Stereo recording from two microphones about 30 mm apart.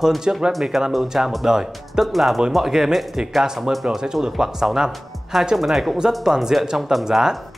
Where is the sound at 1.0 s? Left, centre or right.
Centre.